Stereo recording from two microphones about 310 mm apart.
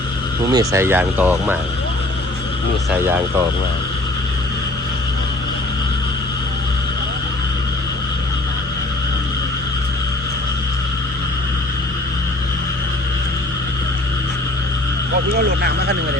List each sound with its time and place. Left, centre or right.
0.5 s speech: centre
15.1 s speech: right